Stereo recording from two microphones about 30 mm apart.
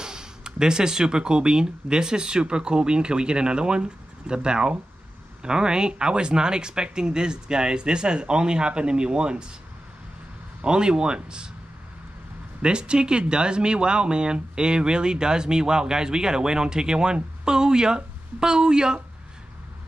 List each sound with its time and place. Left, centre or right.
0.0 s speech: right
10.6 s speech: right
12.6 s speech: right